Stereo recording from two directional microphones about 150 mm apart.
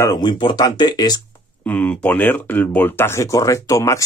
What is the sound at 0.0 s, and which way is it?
Speech, 25° left (ahead or behind).